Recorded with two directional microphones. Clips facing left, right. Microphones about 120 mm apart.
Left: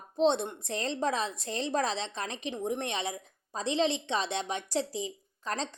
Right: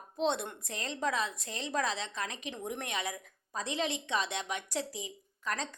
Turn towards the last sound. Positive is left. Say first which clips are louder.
# left 2 dB
turn(degrees=30)  # may be behind; listen again after turning